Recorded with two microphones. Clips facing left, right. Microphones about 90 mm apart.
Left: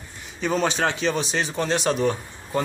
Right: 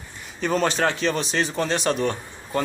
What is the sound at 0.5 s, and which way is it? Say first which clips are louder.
Speech: right 1 dB; centre (ahead or behind).